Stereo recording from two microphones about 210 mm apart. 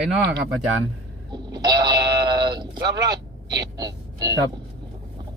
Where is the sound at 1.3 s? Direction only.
20° right (ahead or behind).